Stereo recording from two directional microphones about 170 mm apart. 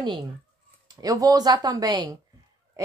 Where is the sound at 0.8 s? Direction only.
20° right (ahead or behind).